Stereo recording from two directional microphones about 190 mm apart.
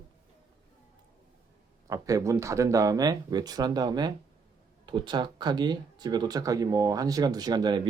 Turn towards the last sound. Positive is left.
turn(degrees=-20)  # may be behind; listen again after turning